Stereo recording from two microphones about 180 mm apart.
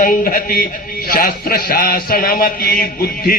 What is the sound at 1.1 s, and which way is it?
A man's voice, 55° left (ahead or behind).